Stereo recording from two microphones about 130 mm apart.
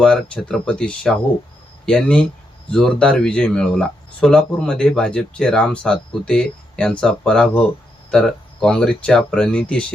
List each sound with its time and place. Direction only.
0.0 s speech: 5° left (ahead or behind)